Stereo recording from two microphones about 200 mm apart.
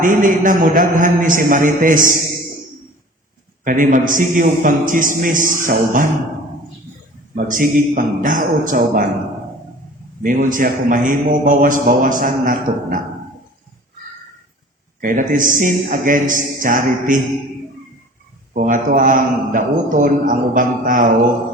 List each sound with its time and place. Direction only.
0.0 s a man's voice: 40° right (ahead or behind)
3.6 s a man's voice: 40° right (ahead or behind)
7.3 s a man's voice: 40° right (ahead or behind)
10.2 s a man's voice: 40° right (ahead or behind)
15.0 s a man's voice: 40° right (ahead or behind)
18.5 s a man's voice: 40° right (ahead or behind)